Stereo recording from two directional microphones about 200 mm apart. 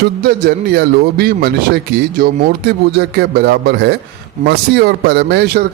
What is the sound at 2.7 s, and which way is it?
A man's voice, 55° right (ahead or behind).